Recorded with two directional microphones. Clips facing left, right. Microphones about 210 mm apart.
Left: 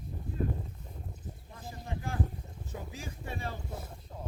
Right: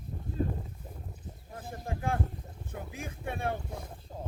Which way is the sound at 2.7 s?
55° right (ahead or behind).